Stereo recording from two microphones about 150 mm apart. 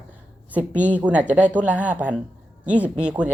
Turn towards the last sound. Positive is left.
turn(degrees=-5)  # may be behind; listen again after turning